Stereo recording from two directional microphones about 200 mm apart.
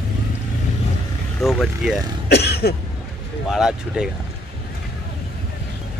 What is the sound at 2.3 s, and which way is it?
Cough, 55° left (ahead or behind).